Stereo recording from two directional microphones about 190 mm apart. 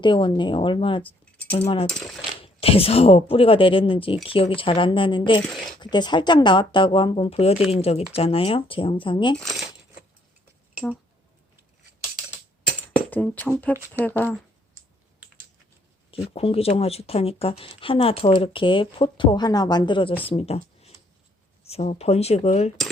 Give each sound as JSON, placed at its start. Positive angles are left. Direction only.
{"t": 0.0, "sound": "speech", "side_deg": 25}
{"t": 1.9, "sound": "speech", "side_deg": 5}
{"t": 2.4, "sound": "speech", "side_deg": 30}
{"t": 9.4, "sound": "speech", "side_deg": 0}
{"t": 12.9, "sound": "music", "side_deg": 10}
{"t": 14.0, "sound": "speech", "side_deg": 10}
{"t": 16.3, "sound": "speech", "side_deg": 30}